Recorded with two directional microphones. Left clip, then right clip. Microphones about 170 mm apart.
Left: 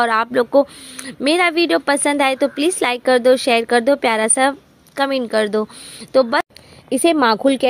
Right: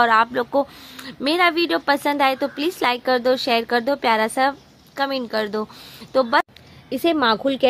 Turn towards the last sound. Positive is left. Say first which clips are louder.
# left 4 dB
turn(degrees=40)  # may be behind; listen again after turning